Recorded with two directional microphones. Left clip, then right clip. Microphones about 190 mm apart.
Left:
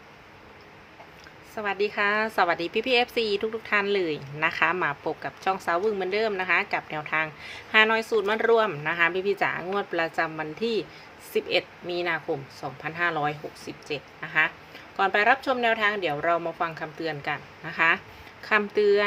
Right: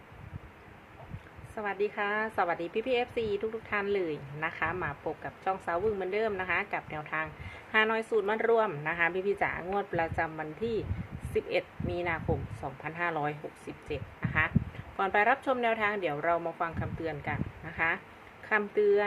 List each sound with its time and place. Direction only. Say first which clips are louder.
1.5 s a woman's voice: left 5 dB; 15° left (ahead or behind)